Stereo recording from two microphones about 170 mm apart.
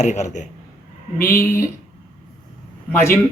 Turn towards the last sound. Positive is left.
turn(degrees=15)  # may be behind; listen again after turning